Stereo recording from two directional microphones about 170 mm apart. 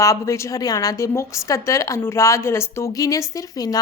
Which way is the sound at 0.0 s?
20° left (ahead or behind).